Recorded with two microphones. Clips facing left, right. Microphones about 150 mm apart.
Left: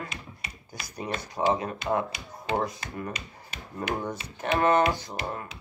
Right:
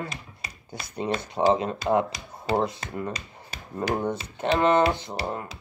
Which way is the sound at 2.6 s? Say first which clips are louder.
Right 3 dB; 30° right (ahead or behind).